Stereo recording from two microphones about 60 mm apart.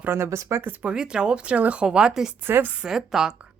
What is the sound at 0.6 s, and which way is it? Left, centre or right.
Speech, right.